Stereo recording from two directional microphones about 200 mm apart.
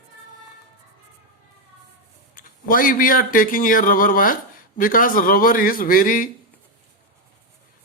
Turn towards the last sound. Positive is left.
turn(degrees=45)  # may be behind; listen again after turning